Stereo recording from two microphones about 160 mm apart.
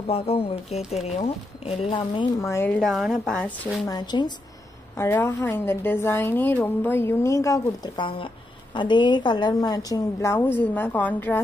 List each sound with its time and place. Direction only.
0.0 s speech: 35° left (ahead or behind)
2.4 s a woman's voice: 15° left (ahead or behind)
2.8 s a woman's voice: centre (ahead or behind)
3.8 s a woman's voice: 25° left (ahead or behind)
4.9 s a woman's voice: 15° left (ahead or behind)